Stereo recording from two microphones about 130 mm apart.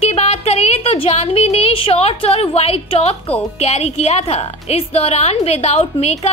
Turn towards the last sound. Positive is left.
turn(degrees=55)  # may be behind; listen again after turning